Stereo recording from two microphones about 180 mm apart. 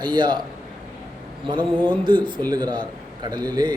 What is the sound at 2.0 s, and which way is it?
A man's voice, 25° right (ahead or behind).